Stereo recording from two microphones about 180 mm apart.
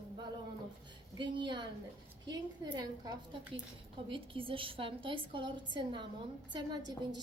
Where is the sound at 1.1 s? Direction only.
25° right (ahead or behind).